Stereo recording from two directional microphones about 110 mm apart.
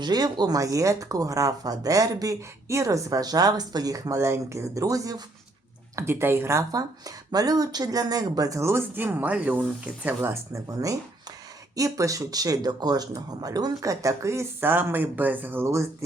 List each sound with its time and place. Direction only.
0.0 s speech: 40° right (ahead or behind)
6.0 s speech: 20° right (ahead or behind)